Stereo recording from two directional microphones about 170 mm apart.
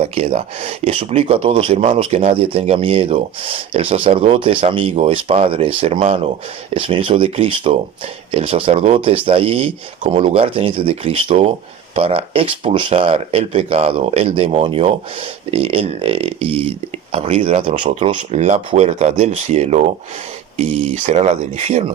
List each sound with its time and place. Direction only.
0.0 s speech: 35° right (ahead or behind)
18.2 s speech: 45° right (ahead or behind)